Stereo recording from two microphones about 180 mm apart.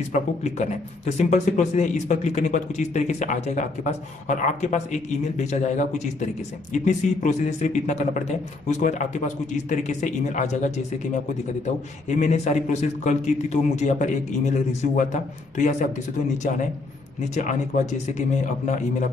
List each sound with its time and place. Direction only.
0.1 s a man's voice: 40° left (ahead or behind)
17.2 s a man's voice: 40° left (ahead or behind)